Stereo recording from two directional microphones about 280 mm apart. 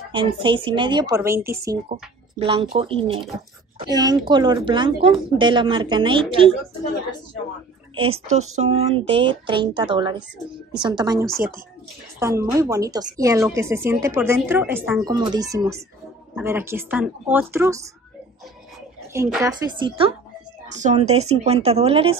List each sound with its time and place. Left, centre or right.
0.1 s speech: centre
7.9 s speech: right
19.1 s speech: centre